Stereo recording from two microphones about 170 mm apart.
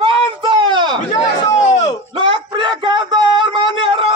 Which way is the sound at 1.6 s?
40° left (ahead or behind).